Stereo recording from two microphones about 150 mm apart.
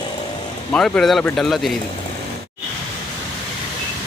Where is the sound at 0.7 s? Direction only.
5° left (ahead or behind).